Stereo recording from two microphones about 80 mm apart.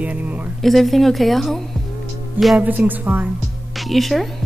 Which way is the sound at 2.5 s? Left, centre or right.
Right.